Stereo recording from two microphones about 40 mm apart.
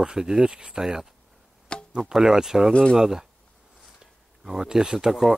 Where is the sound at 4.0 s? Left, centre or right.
Centre.